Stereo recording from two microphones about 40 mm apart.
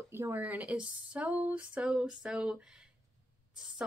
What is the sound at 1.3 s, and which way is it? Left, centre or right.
Speech, right.